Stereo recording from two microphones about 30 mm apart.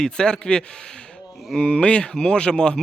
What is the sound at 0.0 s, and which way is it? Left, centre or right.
A man's voice, left.